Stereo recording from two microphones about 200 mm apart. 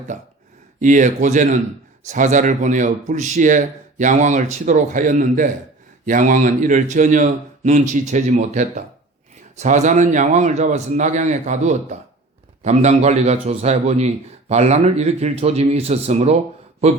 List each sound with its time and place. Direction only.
0.8 s speech: 40° right (ahead or behind)